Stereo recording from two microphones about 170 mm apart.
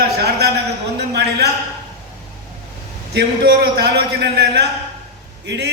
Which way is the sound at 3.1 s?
80° right.